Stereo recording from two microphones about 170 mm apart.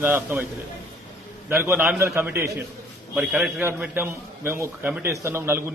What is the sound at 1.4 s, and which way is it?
A man's voice, 10° right (ahead or behind).